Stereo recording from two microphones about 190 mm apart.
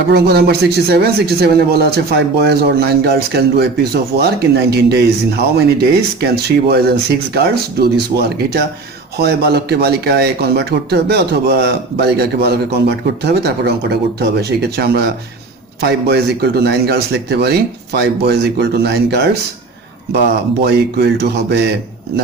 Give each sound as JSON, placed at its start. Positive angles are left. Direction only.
{"t": 0.1, "sound": "speech", "side_deg": -55}